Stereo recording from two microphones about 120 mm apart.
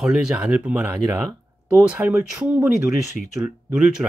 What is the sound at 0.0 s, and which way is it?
Speech, 5° right (ahead or behind).